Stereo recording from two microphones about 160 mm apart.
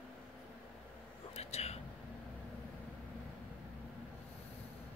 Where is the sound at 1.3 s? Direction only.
40° left (ahead or behind).